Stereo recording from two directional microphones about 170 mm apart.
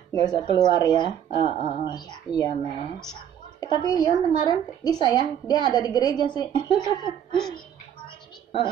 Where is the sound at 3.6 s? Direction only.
25° left (ahead or behind).